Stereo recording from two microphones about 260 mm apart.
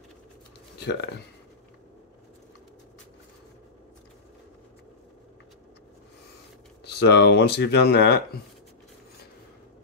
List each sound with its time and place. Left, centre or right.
0.7 s speech: left
6.8 s speech: left